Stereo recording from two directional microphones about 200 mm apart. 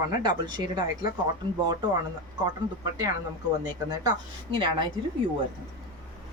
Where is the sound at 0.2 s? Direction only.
20° right (ahead or behind).